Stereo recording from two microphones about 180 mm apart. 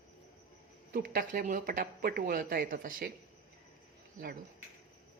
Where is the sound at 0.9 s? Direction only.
50° right (ahead or behind).